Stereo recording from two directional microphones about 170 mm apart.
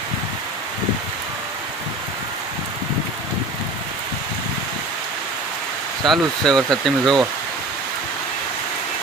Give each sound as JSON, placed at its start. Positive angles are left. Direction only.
{"t": 6.1, "sound": "speech", "side_deg": 5}